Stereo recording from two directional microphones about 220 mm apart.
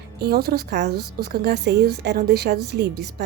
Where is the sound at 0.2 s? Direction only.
45° right (ahead or behind).